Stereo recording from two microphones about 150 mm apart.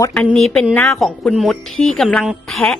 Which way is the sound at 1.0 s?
Centre (ahead or behind).